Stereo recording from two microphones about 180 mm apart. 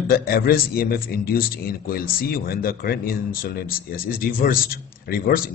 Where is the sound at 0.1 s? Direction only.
55° left (ahead or behind).